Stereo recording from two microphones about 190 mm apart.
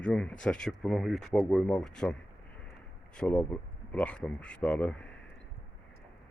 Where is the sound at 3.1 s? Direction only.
10° left (ahead or behind).